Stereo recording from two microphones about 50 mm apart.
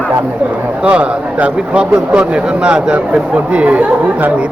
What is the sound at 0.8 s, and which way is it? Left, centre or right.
Speech, right.